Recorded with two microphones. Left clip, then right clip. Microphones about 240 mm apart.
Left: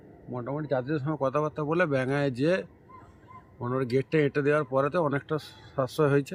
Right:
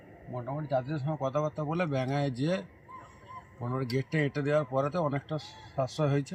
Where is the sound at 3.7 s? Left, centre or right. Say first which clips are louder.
Left 6 dB; centre.